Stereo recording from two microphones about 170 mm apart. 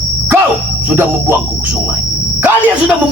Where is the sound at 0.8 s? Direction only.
15° right (ahead or behind).